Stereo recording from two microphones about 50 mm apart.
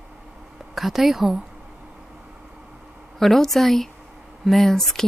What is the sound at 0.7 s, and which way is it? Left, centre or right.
Speech, centre.